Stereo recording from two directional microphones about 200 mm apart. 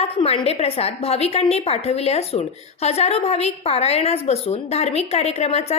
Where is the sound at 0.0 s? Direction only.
30° left (ahead or behind).